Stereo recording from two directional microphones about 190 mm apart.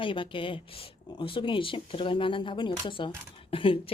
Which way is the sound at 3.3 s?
25° left (ahead or behind).